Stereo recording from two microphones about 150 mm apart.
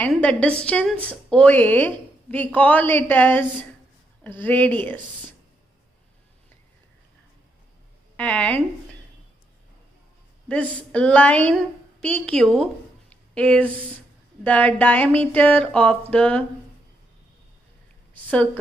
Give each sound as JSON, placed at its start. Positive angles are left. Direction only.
{"t": 0.0, "sound": "a woman's voice", "side_deg": 10}
{"t": 8.2, "sound": "a woman's voice", "side_deg": 10}
{"t": 10.5, "sound": "a woman's voice", "side_deg": 10}
{"t": 13.1, "sound": "a sound", "side_deg": 5}
{"t": 14.4, "sound": "a woman's voice", "side_deg": 10}